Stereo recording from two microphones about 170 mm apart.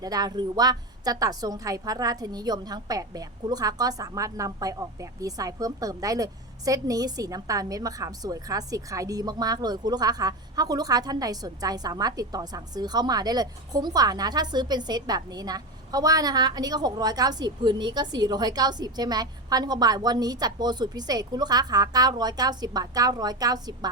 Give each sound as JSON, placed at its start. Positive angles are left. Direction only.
{"t": 0.0, "sound": "a woman's voice", "side_deg": -20}